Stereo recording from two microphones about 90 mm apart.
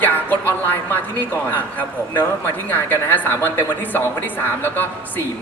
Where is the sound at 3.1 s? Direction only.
25° left (ahead or behind).